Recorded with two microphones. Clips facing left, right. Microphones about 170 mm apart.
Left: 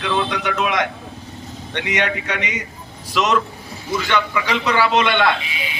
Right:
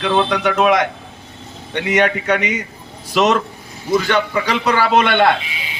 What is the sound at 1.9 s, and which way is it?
Speech, 50° right (ahead or behind).